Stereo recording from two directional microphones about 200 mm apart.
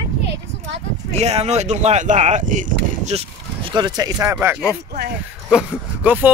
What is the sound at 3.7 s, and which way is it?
Speech, 20° right (ahead or behind).